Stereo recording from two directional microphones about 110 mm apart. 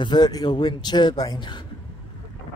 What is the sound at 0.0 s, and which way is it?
Speech, 40° left (ahead or behind).